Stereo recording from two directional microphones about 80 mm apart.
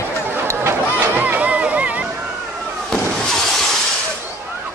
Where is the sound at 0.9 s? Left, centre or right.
Right.